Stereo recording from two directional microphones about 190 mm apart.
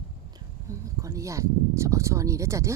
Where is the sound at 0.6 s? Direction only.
15° right (ahead or behind).